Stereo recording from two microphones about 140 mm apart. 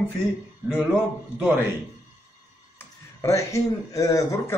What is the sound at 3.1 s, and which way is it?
Speech, 20° left (ahead or behind).